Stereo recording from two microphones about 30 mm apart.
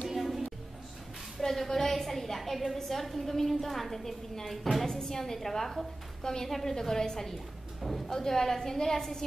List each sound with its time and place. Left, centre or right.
0.1 s music: centre
1.4 s a woman's voice: centre
4.8 s a woman's voice: centre